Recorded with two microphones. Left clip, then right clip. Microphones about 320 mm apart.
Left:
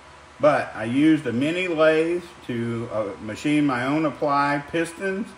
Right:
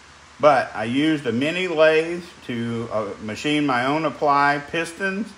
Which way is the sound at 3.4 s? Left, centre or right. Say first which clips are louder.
Right 2 dB; centre.